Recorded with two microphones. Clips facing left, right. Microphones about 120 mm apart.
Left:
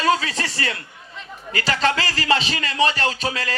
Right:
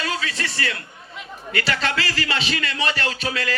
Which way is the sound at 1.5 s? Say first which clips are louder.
Left 3 dB; 35° left (ahead or behind).